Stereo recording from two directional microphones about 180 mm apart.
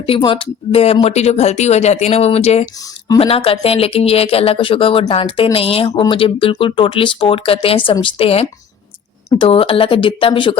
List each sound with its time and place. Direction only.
0.0 s speech: 30° left (ahead or behind)